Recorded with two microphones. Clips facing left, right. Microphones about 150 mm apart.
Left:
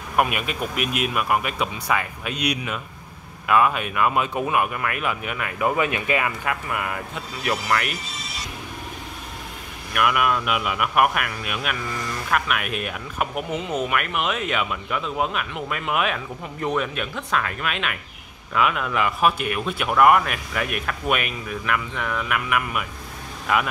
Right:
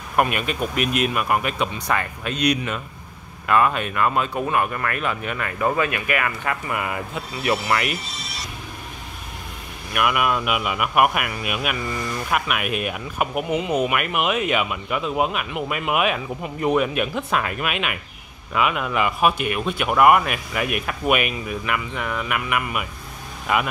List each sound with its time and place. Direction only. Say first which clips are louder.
0.1 s speech: right 1 dB; 5° left (ahead or behind)
5.9 s speech: left 1 dB; 20° left (ahead or behind)
6.4 s speech: right 1 dB; centre (ahead or behind)
9.9 s speech: even; 5° right (ahead or behind)